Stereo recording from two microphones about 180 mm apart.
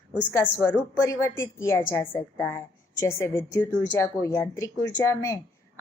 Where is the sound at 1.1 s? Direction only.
15° left (ahead or behind).